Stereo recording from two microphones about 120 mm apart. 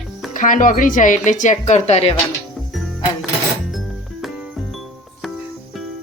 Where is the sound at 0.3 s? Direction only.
90° left; by 2.1 s 60° left (ahead or behind).